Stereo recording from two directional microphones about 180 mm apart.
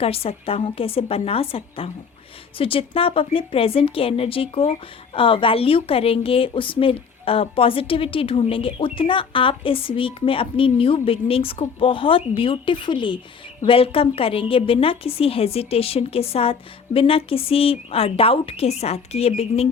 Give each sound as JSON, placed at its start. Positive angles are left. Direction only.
{"t": 0.0, "sound": "a woman's voice", "side_deg": 35}